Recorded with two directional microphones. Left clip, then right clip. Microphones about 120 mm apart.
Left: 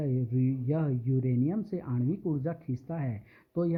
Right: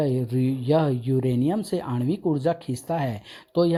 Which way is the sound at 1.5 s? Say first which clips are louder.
Right 8 dB; 20° right (ahead or behind).